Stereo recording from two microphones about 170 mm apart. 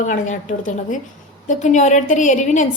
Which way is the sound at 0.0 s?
45° left (ahead or behind).